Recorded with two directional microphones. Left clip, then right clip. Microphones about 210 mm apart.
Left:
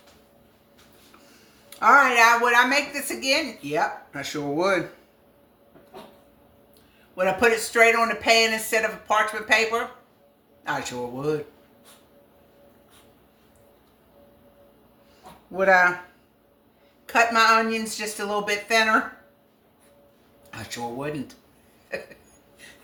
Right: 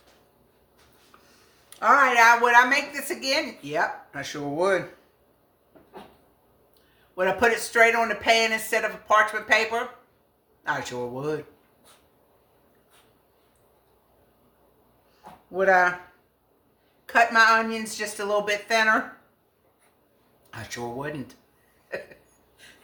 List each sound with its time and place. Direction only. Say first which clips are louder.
1.8 s a woman's voice: left 1 dB; 15° right (ahead or behind)
7.2 s a woman's voice: left 1 dB; 15° right (ahead or behind)
15.5 s a woman's voice: left 2 dB; 10° right (ahead or behind)
17.1 s a woman's voice: even; 10° right (ahead or behind)
20.5 s a woman's voice: left 1 dB; 15° right (ahead or behind)
21.8 s a sound: left 1 dB; 15° right (ahead or behind)